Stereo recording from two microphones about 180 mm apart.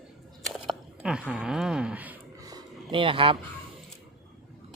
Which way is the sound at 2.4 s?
20° right (ahead or behind).